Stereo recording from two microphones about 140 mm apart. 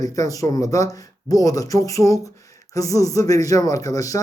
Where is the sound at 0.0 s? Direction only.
25° left (ahead or behind).